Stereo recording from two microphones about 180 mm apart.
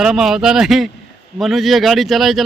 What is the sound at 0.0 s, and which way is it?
Speech, 5° right (ahead or behind).